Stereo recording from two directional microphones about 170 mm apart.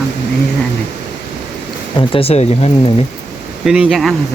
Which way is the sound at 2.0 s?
35° left (ahead or behind).